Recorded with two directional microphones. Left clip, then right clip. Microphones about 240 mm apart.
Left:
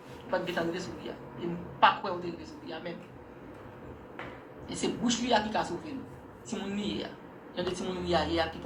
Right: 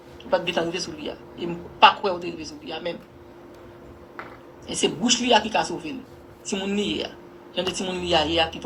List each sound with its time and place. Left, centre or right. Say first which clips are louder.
0.3 s a woman's voice: right 8 dB; right
4.7 s a woman's voice: right 9 dB; right